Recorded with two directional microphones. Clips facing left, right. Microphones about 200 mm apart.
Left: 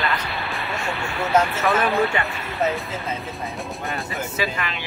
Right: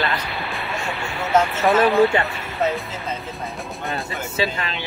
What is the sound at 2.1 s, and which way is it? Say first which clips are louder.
Speech: right 3 dB; 30° right (ahead or behind).